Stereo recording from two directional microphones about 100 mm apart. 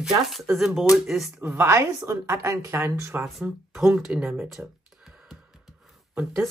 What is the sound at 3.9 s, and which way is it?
Speech, 10° right (ahead or behind).